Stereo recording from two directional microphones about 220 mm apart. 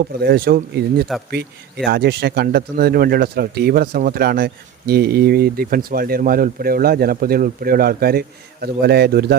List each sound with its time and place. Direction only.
0.0 s speech: 45° right (ahead or behind)